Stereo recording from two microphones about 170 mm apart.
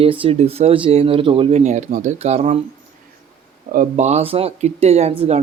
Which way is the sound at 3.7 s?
45° right (ahead or behind).